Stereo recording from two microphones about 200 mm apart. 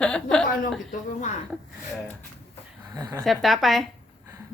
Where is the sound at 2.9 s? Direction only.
15° right (ahead or behind).